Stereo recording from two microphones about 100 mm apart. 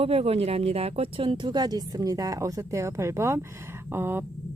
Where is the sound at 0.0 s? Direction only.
75° right (ahead or behind).